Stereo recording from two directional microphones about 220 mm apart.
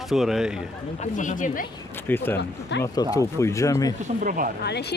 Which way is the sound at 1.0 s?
35° left (ahead or behind).